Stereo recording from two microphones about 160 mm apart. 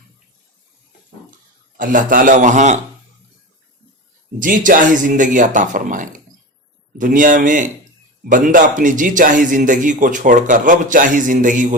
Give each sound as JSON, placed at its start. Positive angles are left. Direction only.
{"t": 1.8, "sound": "a man's voice", "side_deg": -60}
{"t": 4.4, "sound": "a man's voice", "side_deg": -55}